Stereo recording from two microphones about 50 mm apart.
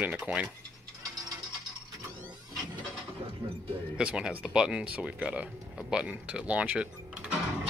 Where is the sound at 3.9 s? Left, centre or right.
Centre.